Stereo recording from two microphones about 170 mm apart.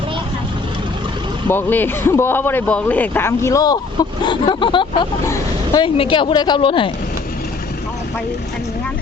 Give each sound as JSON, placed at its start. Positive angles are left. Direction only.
{"t": 1.5, "sound": "a woman's voice", "side_deg": 10}
{"t": 5.2, "sound": "vehicle", "side_deg": 15}
{"t": 5.8, "sound": "a woman's voice", "side_deg": 30}